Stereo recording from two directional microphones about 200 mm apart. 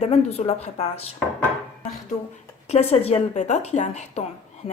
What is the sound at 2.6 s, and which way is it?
A woman's voice, 30° left (ahead or behind).